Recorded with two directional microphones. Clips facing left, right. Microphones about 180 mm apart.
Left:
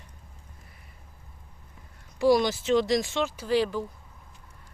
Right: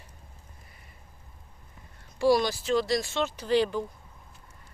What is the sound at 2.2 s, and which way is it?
Speech, 20° left (ahead or behind).